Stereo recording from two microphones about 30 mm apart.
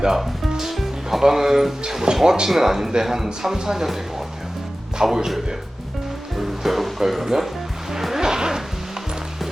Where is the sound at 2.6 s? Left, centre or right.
Centre.